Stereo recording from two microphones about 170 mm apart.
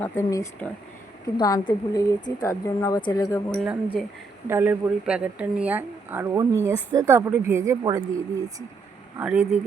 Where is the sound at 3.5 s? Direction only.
10° right (ahead or behind).